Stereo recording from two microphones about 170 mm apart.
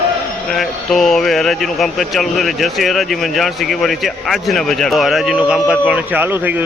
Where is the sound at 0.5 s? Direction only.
Centre (ahead or behind).